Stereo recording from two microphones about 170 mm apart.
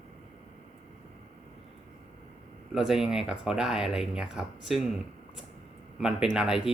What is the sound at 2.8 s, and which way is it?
Speech, centre (ahead or behind).